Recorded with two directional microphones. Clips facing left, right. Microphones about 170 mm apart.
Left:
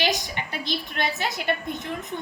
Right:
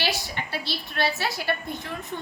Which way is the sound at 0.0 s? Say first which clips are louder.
Left 3 dB; 15° left (ahead or behind).